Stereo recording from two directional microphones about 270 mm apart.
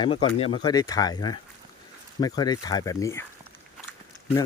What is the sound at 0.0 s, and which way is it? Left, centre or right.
Speech, centre.